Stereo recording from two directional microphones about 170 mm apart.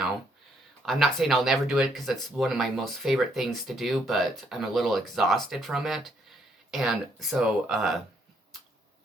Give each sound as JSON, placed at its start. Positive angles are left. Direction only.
{"t": 0.9, "sound": "speech", "side_deg": 0}